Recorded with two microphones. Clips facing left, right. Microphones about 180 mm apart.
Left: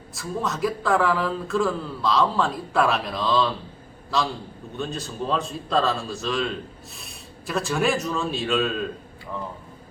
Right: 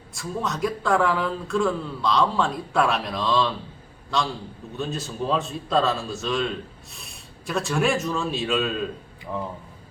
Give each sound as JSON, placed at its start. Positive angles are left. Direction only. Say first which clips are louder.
{"t": 0.1, "sound": "a man's voice", "louder": "even", "side_deg": 0}
{"t": 9.3, "sound": "speech", "louder": "right 3 dB", "side_deg": -15}